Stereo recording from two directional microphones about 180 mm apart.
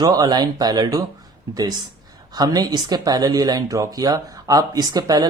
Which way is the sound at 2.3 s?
20° right (ahead or behind).